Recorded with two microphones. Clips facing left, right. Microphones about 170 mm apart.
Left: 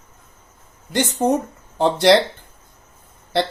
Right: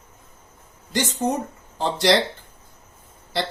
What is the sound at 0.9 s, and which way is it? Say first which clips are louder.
Speech: left 4 dB; 55° left (ahead or behind).